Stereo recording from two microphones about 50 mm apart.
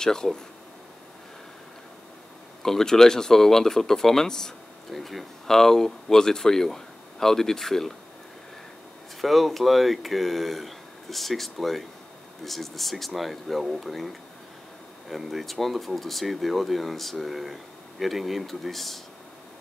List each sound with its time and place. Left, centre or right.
0.0 s speech: centre
2.6 s speech: centre
9.2 s speech: centre